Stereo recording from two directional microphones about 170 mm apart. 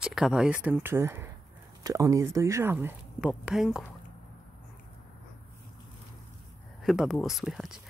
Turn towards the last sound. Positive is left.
turn(degrees=0)  # may be behind; listen again after turning